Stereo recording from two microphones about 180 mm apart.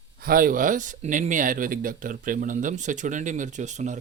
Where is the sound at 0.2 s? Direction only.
55° right (ahead or behind).